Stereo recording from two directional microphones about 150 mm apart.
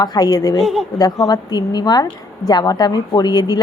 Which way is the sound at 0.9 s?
25° left (ahead or behind).